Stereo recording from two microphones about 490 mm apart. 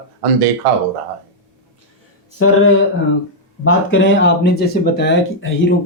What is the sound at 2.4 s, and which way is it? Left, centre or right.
Speech, left.